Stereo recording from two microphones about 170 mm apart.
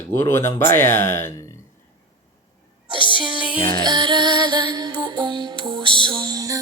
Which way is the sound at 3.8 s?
25° right (ahead or behind).